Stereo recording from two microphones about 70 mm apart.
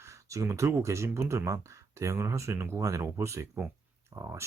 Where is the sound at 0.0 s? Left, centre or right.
Right.